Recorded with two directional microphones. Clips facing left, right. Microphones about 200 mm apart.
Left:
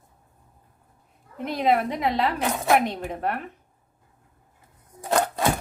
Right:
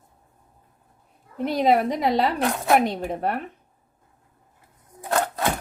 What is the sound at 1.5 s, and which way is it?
Speech, 35° right (ahead or behind).